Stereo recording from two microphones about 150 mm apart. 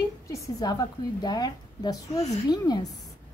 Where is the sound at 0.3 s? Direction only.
25° left (ahead or behind).